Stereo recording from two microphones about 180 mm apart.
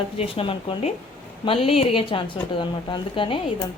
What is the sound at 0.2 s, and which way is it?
A woman's voice, 30° left (ahead or behind).